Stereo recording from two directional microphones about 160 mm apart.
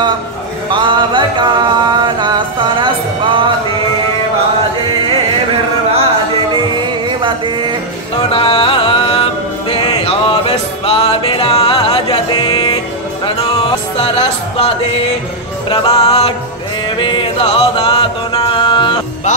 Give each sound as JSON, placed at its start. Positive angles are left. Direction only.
{"t": 0.7, "sound": "music", "side_deg": -30}
{"t": 7.2, "sound": "a sound", "side_deg": -30}
{"t": 8.3, "sound": "music", "side_deg": 35}
{"t": 15.7, "sound": "music", "side_deg": 40}
{"t": 17.0, "sound": "singing", "side_deg": 30}